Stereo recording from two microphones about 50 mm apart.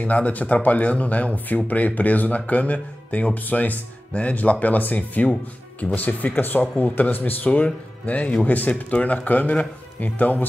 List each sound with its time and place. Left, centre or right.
0.0 s speech: left
7.4 s speech: left